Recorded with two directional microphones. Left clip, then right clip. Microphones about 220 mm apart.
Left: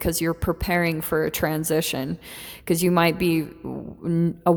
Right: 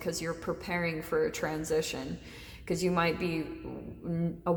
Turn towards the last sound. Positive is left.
turn(degrees=45)  # may be behind; listen again after turning